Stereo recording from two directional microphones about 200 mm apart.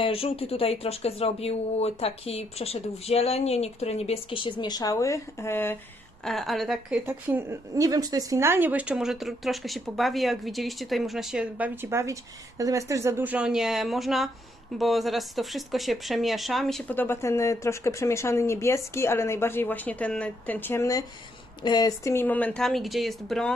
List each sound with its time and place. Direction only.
0.0 s speech: 30° left (ahead or behind); by 5.8 s 10° left (ahead or behind)
6.2 s a woman's voice: centre (ahead or behind)
7.1 s a woman's voice: 10° right (ahead or behind)